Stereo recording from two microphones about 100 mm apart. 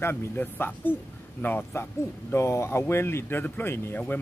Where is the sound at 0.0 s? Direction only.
20° left (ahead or behind).